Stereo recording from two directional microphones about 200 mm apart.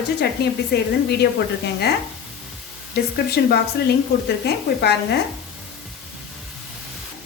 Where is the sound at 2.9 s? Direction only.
50° left (ahead or behind).